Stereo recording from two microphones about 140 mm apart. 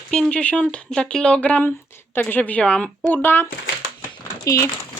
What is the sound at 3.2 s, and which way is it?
Speech, 15° left (ahead or behind).